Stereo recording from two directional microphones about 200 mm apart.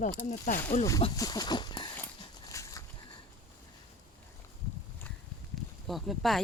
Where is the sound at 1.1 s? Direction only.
20° left (ahead or behind).